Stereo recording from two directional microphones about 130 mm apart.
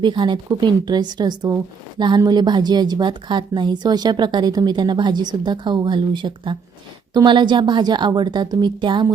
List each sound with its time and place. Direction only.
0.0 s a woman's voice: 35° right (ahead or behind)